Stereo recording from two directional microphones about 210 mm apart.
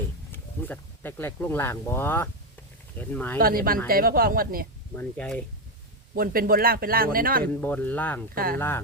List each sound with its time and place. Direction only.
0.3 s speech: 10° left (ahead or behind)
3.3 s speech: 45° right (ahead or behind)
4.9 s speech: 5° left (ahead or behind)
6.1 s speech: 45° right (ahead or behind)
7.4 s speech: 10° left (ahead or behind)